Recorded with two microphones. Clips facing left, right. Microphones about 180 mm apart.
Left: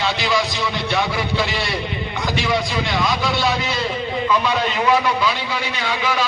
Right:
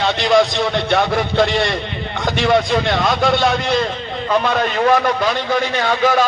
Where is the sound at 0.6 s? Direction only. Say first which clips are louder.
Right 5 dB; 55° right (ahead or behind).